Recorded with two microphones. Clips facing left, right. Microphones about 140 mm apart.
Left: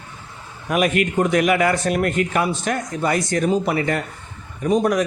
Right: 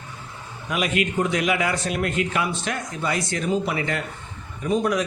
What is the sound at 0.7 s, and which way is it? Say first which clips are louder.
A man's voice: left 5 dB; 50° left (ahead or behind).